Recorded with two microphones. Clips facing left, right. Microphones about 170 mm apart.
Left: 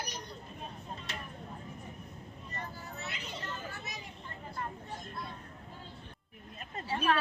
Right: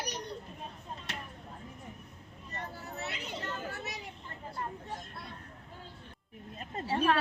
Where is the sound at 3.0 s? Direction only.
70° right (ahead or behind).